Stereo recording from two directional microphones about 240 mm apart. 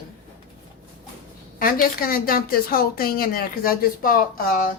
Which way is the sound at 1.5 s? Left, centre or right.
Left.